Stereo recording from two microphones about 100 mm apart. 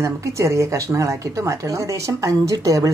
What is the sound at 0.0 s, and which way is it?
A woman's voice, 30° right (ahead or behind).